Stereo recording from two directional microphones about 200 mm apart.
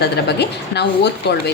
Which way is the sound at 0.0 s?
55° left (ahead or behind).